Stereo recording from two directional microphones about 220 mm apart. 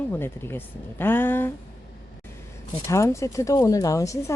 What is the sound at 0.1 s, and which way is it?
Speech, 10° left (ahead or behind).